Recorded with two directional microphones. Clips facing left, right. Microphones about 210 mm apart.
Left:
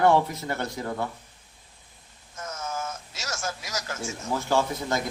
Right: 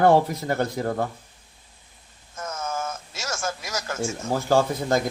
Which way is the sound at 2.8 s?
50° right (ahead or behind).